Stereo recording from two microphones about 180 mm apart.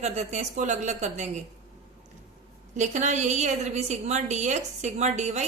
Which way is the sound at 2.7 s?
40° right (ahead or behind).